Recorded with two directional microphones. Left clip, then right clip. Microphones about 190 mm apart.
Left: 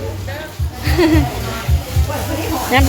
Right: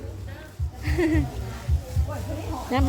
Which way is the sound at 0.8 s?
30° right (ahead or behind).